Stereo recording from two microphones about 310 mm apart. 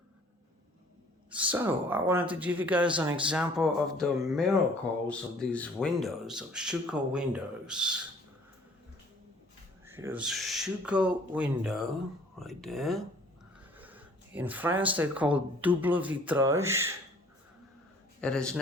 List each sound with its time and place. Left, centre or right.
1.3 s speech: centre
9.8 s speech: centre
18.2 s a man's voice: centre